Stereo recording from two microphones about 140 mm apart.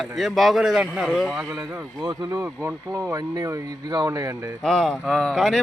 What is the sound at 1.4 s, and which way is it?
Speech, 20° right (ahead or behind).